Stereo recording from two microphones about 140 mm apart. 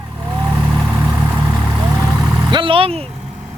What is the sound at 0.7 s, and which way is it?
Vehicle, 10° right (ahead or behind).